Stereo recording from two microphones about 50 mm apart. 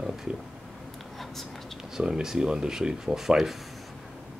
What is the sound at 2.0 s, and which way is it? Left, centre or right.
Speech, centre.